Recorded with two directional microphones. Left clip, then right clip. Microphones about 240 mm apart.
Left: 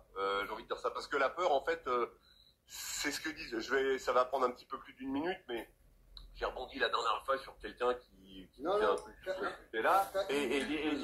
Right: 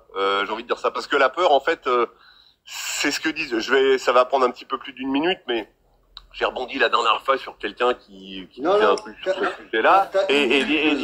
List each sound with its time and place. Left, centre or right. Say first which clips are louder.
0.1 s speech: right 14 dB; right